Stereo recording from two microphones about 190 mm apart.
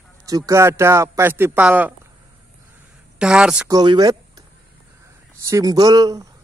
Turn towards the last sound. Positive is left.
turn(degrees=-20)  # may be behind; listen again after turning